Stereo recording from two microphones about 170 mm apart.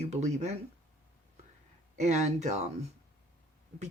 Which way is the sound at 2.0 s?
45° right (ahead or behind).